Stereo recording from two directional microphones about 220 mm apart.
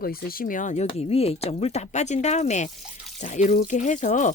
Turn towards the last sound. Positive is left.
turn(degrees=35)  # may be behind; listen again after turning